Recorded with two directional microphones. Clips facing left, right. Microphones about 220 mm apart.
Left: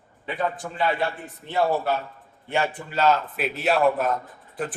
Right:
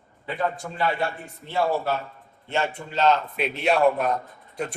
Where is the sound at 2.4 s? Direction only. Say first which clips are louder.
Left 1 dB; 10° left (ahead or behind).